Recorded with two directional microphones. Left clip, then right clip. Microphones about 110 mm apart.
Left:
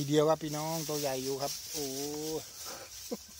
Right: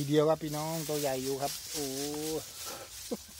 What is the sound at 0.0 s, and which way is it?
Speech, 50° left (ahead or behind).